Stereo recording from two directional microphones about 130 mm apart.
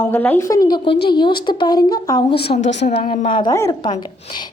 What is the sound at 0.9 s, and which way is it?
A woman's voice, 35° left (ahead or behind).